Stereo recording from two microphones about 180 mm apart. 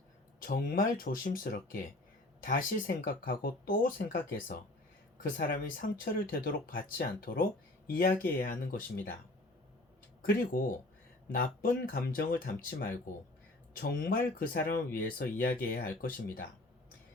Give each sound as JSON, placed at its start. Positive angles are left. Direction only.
{"t": 0.3, "sound": "speech", "side_deg": 50}
{"t": 10.2, "sound": "speech", "side_deg": 50}